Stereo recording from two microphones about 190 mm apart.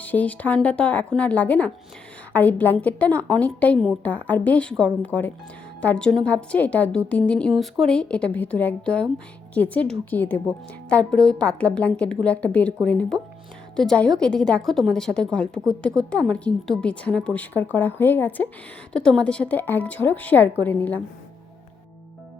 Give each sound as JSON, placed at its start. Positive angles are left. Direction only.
{"t": 0.0, "sound": "a woman's voice", "side_deg": 10}